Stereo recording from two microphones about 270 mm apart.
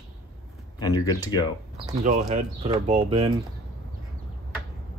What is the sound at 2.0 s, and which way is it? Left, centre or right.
Speech, right.